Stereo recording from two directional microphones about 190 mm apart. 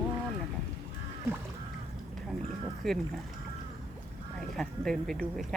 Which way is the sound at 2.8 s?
Centre (ahead or behind).